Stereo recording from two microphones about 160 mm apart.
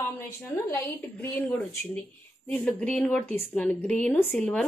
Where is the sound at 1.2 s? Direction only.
10° left (ahead or behind).